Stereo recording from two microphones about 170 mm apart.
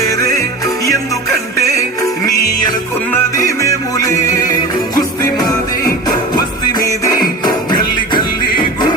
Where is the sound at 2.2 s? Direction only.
20° left (ahead or behind).